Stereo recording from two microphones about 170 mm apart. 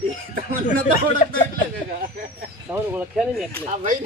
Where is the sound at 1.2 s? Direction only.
50° left (ahead or behind).